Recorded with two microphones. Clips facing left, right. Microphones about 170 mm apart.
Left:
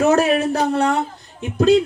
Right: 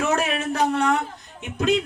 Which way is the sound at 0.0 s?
35° left (ahead or behind).